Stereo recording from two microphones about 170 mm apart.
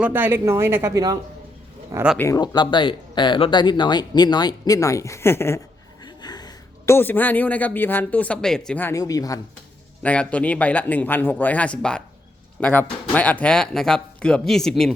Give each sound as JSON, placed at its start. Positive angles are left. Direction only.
{"t": 0.0, "sound": "speech", "side_deg": -10}
{"t": 2.1, "sound": "speech", "side_deg": 15}
{"t": 10.0, "sound": "speech", "side_deg": 5}